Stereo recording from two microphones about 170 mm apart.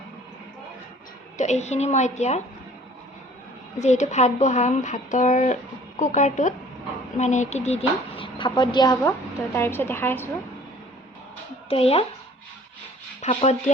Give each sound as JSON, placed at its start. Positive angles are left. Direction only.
{"t": 1.4, "sound": "a woman's voice", "side_deg": 40}
{"t": 3.8, "sound": "a woman's voice", "side_deg": 45}
{"t": 9.6, "sound": "a woman's voice", "side_deg": 10}
{"t": 11.7, "sound": "speech", "side_deg": 35}
{"t": 13.2, "sound": "speech", "side_deg": 40}